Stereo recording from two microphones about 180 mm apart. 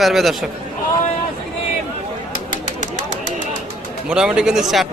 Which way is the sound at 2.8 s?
45° left (ahead or behind).